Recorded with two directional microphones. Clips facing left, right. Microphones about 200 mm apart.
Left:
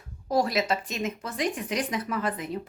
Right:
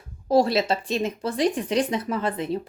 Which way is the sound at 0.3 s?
30° right (ahead or behind).